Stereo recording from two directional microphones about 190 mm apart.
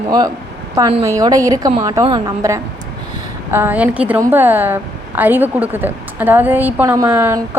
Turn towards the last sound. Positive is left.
turn(degrees=-10)  # may be behind; listen again after turning